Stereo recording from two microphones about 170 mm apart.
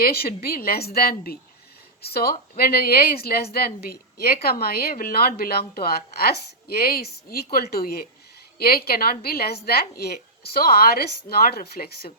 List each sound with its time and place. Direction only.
0.0 s a woman's voice: 65° left (ahead or behind)